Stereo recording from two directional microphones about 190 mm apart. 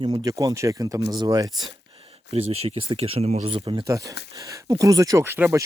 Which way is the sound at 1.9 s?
30° right (ahead or behind).